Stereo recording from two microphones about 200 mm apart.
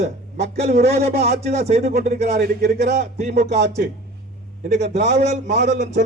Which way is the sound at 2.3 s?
55° right (ahead or behind).